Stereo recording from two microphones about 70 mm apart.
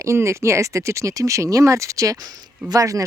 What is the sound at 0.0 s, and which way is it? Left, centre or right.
Speech, right.